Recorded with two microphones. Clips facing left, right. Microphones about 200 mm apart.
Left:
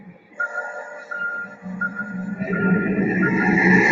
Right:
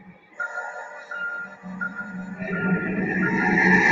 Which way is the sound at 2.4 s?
30° left (ahead or behind).